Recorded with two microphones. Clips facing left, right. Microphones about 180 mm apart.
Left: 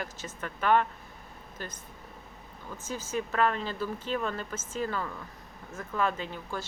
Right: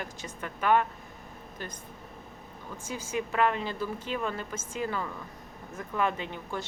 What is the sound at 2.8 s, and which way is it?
Speech, 10° right (ahead or behind).